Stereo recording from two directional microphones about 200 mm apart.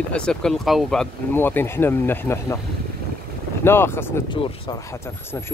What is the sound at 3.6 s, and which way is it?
Speech, 10° left (ahead or behind).